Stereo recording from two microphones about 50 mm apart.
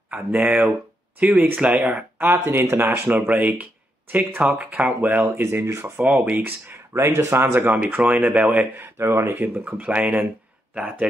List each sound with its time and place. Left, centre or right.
0.1 s speech: right
2.2 s speech: right
3.1 s speech: right
5.3 s speech: right
5.9 s speech: right
6.4 s speech: right
7.0 s speech: right
7.3 s speech: right
7.6 s speech: right
8.9 s speech: right
9.4 s speech: right